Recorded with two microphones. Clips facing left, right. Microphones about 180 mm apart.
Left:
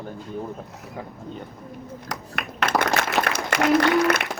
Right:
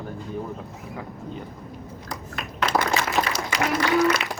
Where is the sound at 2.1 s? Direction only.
70° left (ahead or behind).